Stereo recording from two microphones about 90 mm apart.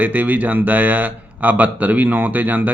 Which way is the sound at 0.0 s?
20° right (ahead or behind).